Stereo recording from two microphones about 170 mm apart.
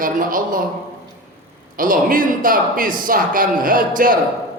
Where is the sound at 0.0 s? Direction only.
55° right (ahead or behind).